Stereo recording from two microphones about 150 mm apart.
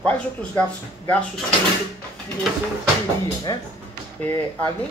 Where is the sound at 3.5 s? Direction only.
25° left (ahead or behind).